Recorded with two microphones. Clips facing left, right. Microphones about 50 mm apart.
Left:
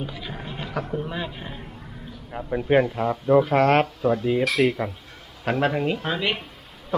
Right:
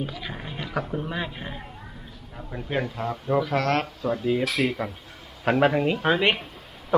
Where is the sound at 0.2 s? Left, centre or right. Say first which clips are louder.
Left 1 dB; centre.